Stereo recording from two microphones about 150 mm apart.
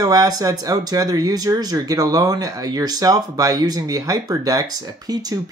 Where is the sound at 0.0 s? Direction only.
25° right (ahead or behind).